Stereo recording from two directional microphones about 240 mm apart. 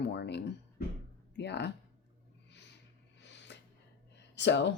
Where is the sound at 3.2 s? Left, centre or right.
Left.